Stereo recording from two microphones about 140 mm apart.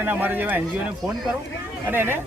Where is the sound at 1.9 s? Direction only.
15° right (ahead or behind).